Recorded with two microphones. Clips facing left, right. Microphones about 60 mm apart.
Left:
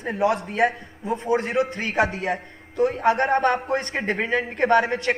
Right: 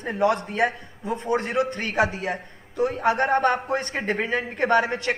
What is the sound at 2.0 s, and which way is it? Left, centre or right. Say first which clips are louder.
Speech: left 1 dB; left.